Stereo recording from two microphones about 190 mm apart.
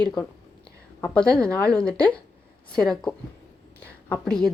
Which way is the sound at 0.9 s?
5° left (ahead or behind).